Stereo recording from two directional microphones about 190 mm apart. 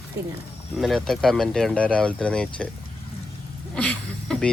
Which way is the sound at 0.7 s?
Centre (ahead or behind).